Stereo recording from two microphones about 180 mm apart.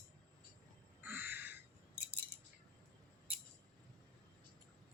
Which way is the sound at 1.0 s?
10° right (ahead or behind).